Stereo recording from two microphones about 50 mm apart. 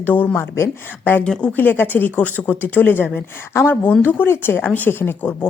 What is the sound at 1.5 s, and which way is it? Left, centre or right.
Speech, left.